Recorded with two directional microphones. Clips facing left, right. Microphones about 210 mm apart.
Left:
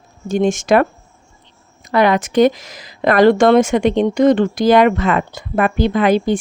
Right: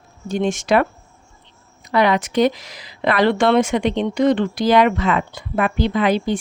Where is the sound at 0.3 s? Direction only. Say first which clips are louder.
Left 4 dB; 45° left (ahead or behind).